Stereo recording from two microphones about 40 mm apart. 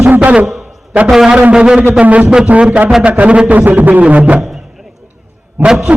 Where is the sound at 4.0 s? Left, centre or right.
Right.